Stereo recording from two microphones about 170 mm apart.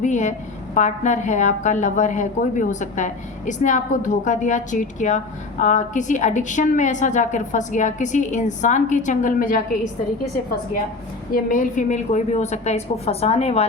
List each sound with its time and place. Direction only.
0.0 s a woman's voice: 45° left (ahead or behind)
11.3 s a woman's voice: 55° left (ahead or behind); by 13.7 s 35° left (ahead or behind)